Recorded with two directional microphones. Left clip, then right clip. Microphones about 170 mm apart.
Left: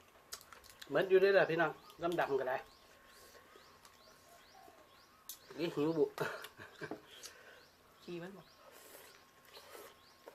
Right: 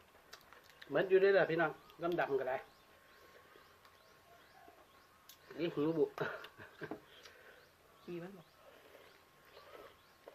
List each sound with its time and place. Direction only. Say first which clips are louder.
0.8 s speech: left 1 dB; 15° left (ahead or behind)
5.5 s speech: left 1 dB; 15° left (ahead or behind)
8.0 s speech: even; 5° left (ahead or behind)